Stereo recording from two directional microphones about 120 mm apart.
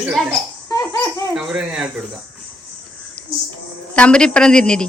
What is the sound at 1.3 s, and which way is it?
Speech, 5° right (ahead or behind).